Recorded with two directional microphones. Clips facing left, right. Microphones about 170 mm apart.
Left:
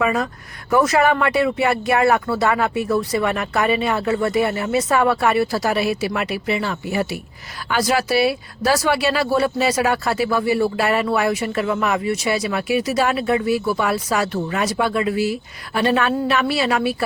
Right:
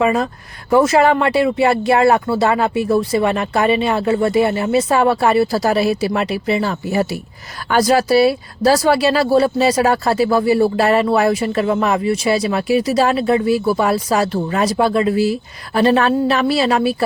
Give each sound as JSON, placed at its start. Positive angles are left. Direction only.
{"t": 0.0, "sound": "speech", "side_deg": -25}